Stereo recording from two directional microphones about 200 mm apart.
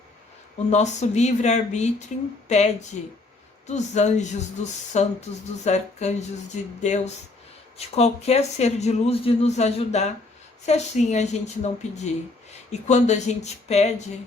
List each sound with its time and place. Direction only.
0.7 s speech: 35° left (ahead or behind)